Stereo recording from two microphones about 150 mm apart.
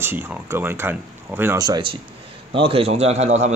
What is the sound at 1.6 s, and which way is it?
A man's voice, 30° right (ahead or behind).